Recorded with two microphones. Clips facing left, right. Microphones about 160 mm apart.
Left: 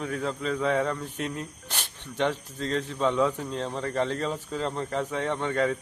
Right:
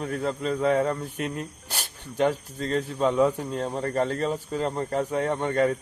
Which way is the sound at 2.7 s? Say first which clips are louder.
Right 3 dB; 10° right (ahead or behind).